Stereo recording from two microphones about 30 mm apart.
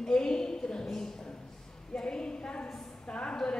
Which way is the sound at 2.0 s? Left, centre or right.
Left.